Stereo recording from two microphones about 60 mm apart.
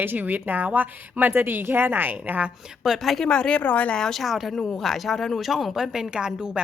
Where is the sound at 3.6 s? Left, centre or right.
Left.